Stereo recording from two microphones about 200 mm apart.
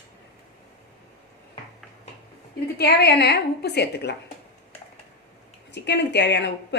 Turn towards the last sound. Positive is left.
turn(degrees=60)  # may be behind; listen again after turning